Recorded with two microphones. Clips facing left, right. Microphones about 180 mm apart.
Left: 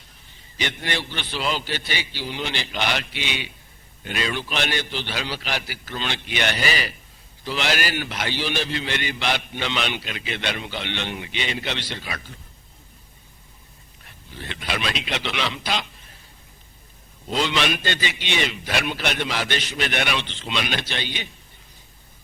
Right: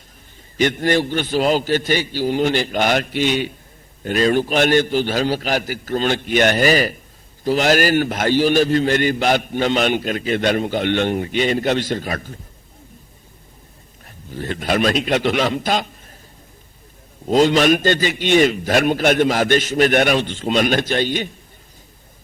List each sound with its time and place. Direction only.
0.5 s a man's voice: 45° right (ahead or behind)
14.0 s a man's voice: 45° right (ahead or behind)
17.2 s a man's voice: 45° right (ahead or behind)